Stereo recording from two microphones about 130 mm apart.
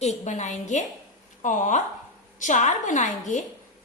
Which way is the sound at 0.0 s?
60° left (ahead or behind).